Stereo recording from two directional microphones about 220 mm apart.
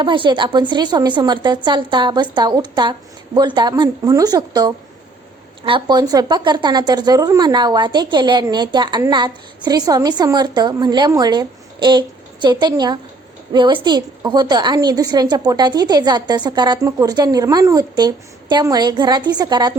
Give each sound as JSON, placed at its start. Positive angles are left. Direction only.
{"t": 0.0, "sound": "a woman's voice", "side_deg": -20}